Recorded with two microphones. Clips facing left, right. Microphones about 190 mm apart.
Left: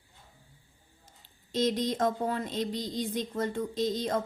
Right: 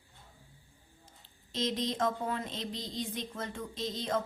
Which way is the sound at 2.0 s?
40° left (ahead or behind).